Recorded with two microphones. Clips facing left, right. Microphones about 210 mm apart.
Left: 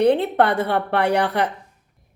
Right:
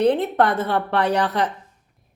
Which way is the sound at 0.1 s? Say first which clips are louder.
Left 1 dB; 65° left (ahead or behind).